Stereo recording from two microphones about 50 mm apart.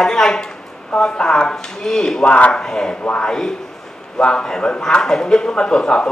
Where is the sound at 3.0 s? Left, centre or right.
Left.